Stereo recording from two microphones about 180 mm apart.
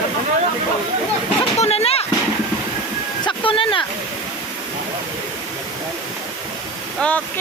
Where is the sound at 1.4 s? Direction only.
35° left (ahead or behind).